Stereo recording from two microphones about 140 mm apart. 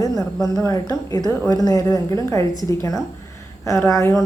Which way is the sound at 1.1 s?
25° left (ahead or behind).